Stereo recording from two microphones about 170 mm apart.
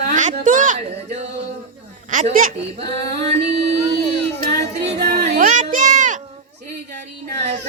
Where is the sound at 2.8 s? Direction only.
40° right (ahead or behind).